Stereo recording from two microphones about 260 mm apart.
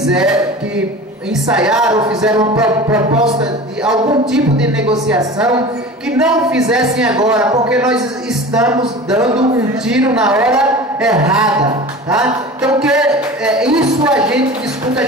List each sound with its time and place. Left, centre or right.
0.0 s music: centre
3.1 s speech: right
4.9 s music: centre